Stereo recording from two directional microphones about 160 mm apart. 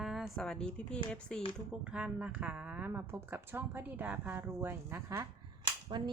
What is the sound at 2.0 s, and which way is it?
Speech, 5° right (ahead or behind).